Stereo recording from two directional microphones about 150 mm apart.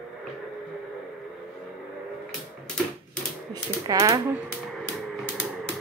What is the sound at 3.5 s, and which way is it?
Speech, 25° right (ahead or behind).